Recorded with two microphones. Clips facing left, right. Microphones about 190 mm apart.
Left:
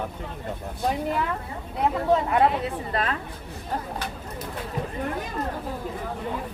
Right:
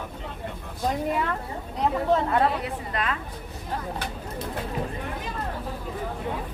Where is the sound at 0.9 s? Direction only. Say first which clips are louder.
Even; centre (ahead or behind).